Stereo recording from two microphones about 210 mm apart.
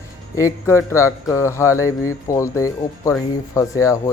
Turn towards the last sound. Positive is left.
turn(degrees=15)  # may be behind; listen again after turning